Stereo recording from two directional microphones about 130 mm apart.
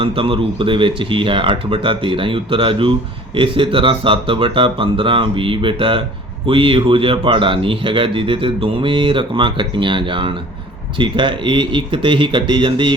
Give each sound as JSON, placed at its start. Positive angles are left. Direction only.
{"t": 0.0, "sound": "speech", "side_deg": -45}